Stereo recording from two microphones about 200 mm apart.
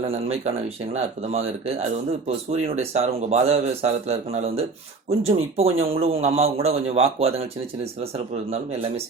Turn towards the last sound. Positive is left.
turn(degrees=-30)  # may be behind; listen again after turning